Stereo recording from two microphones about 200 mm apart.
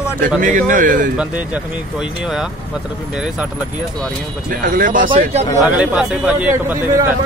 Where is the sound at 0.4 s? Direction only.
40° right (ahead or behind).